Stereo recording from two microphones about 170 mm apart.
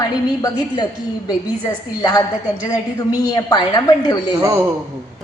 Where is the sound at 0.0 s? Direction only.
20° left (ahead or behind).